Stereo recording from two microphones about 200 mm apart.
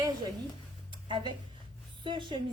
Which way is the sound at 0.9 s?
25° right (ahead or behind).